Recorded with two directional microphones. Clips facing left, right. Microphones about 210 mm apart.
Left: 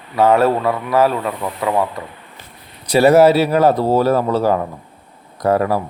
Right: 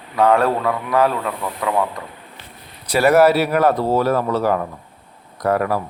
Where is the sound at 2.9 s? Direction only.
25° left (ahead or behind).